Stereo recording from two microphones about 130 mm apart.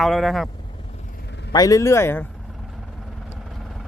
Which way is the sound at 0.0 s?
Centre (ahead or behind).